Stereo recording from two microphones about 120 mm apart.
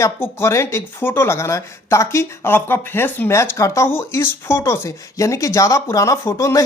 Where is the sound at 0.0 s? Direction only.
20° left (ahead or behind).